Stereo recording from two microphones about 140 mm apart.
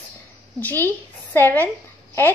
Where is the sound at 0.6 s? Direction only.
15° left (ahead or behind).